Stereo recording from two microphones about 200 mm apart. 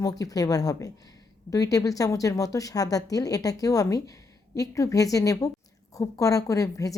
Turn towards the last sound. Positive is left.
turn(degrees=15)  # may be behind; listen again after turning